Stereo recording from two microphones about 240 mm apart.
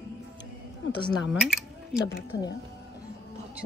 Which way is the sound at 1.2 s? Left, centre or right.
Centre.